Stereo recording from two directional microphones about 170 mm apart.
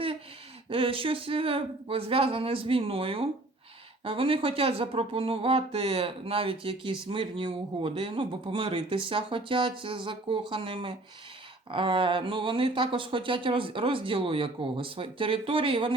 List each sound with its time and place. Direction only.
0.7 s speech: 30° right (ahead or behind)